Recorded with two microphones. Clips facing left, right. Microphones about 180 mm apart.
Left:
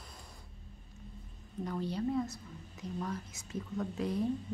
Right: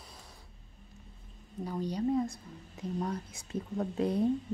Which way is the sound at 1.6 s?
15° right (ahead or behind).